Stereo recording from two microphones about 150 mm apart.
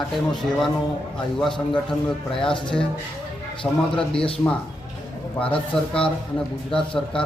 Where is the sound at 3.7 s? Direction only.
Centre (ahead or behind).